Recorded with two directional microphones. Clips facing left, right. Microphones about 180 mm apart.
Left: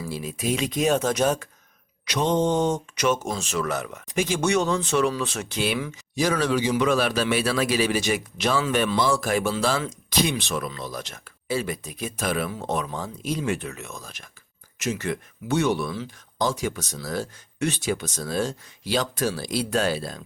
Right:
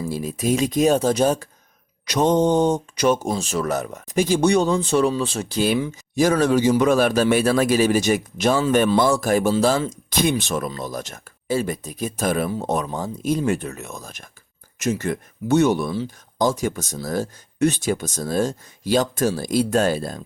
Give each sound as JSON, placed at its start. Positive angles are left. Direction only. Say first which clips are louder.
{"t": 0.0, "sound": "speech", "louder": "right 5 dB", "side_deg": -45}
{"t": 2.0, "sound": "a man's voice", "louder": "right 5 dB", "side_deg": -45}
{"t": 15.9, "sound": "speech", "louder": "right 6 dB", "side_deg": -30}
{"t": 16.4, "sound": "a man's voice", "louder": "right 5 dB", "side_deg": -45}